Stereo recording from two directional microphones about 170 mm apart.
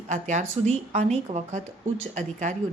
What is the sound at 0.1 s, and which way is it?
A woman's voice, 45° right (ahead or behind).